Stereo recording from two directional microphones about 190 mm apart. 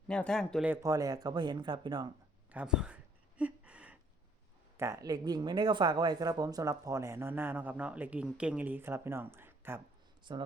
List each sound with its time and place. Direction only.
0.1 s speech: 5° left (ahead or behind)
0.7 s speech: 15° right (ahead or behind)
2.5 s a sound: 5° right (ahead or behind)
4.8 s speech: 15° right (ahead or behind)
10.3 s speech: 25° right (ahead or behind)